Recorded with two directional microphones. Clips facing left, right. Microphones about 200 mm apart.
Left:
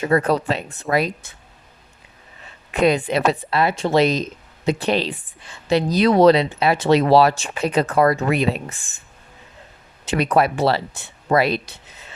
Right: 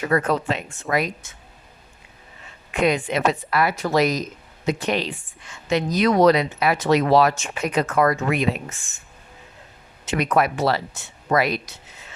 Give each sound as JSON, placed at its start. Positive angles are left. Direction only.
{"t": 0.0, "sound": "speech", "side_deg": 30}
{"t": 2.7, "sound": "speech", "side_deg": 35}
{"t": 10.1, "sound": "speech", "side_deg": 30}